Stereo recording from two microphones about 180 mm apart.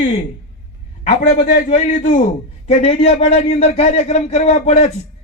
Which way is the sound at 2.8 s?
35° left (ahead or behind).